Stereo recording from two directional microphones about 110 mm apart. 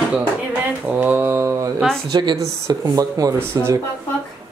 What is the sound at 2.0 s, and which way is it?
Speech, 40° right (ahead or behind).